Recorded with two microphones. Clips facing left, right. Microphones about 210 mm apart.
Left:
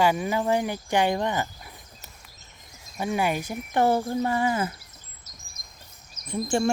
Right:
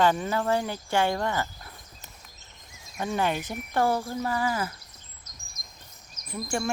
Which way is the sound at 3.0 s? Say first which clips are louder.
Left 2 dB; 10° left (ahead or behind).